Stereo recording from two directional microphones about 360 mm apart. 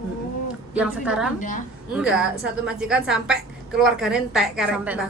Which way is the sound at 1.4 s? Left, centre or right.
Left.